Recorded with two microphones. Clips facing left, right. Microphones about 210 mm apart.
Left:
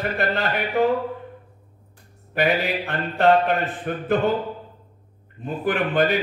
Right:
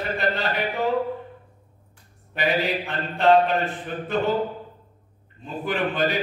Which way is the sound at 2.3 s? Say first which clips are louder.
Left 2 dB; 55° left (ahead or behind).